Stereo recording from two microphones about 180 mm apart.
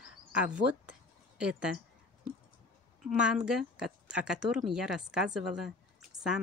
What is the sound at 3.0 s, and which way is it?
Speech, 5° right (ahead or behind).